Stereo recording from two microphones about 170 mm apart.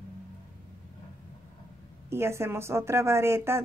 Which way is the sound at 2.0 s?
15° right (ahead or behind).